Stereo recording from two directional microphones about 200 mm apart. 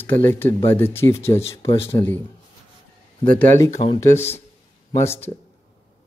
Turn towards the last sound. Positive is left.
turn(degrees=15)  # may be behind; listen again after turning